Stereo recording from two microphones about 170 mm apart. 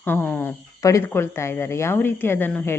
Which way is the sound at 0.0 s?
10° left (ahead or behind).